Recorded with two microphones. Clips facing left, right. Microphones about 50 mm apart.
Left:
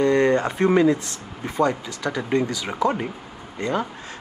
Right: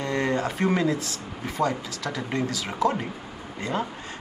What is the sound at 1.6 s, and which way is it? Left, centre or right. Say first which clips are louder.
Speech: left 5 dB; left.